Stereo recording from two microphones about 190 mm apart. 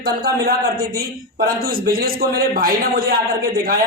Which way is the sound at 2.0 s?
50° right (ahead or behind).